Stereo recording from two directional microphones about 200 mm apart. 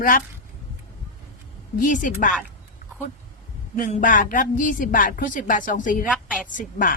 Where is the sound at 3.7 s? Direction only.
40° left (ahead or behind).